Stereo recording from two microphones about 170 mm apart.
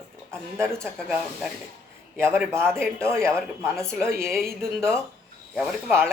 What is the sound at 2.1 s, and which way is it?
Speech, 15° right (ahead or behind).